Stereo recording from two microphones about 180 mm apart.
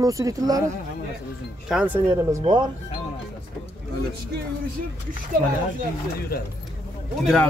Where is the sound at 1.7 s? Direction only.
10° right (ahead or behind).